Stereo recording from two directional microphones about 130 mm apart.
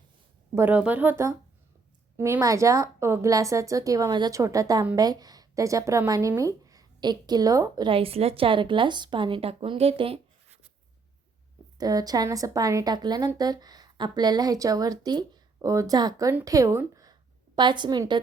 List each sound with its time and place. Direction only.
0.5 s a woman's voice: 15° right (ahead or behind)
7.9 s a woman's voice: 45° right (ahead or behind)
11.8 s a woman's voice: 30° right (ahead or behind)